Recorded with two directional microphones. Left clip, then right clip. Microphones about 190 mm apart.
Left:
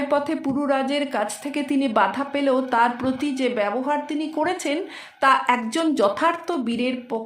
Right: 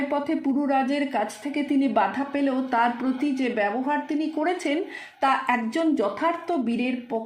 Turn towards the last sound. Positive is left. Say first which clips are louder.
# left 2 dB
turn(degrees=25)  # may be behind; listen again after turning